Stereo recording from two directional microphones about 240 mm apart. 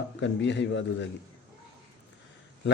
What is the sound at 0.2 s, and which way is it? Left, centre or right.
Speech, left.